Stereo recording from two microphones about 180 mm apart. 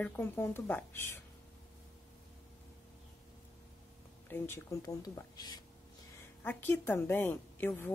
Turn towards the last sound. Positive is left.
turn(degrees=10)  # may be behind; listen again after turning